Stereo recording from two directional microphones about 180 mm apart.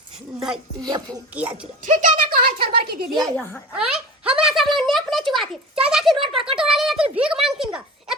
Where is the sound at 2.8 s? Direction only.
60° right (ahead or behind).